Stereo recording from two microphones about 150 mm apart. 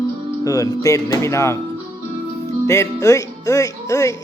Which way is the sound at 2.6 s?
20° left (ahead or behind).